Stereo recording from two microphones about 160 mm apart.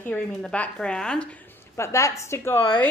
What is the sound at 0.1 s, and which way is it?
A woman's voice, 10° left (ahead or behind).